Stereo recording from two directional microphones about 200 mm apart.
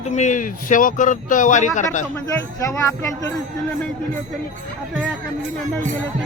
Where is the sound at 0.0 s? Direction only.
35° left (ahead or behind).